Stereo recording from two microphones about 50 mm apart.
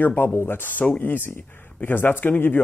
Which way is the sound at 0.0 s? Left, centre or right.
Left.